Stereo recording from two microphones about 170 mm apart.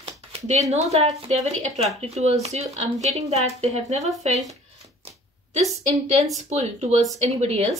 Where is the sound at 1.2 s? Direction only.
40° right (ahead or behind).